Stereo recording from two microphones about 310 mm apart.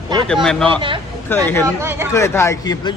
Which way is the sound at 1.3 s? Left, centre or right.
Centre.